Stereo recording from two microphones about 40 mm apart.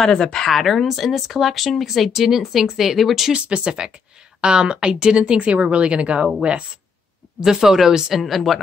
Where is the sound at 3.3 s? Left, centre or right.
Right.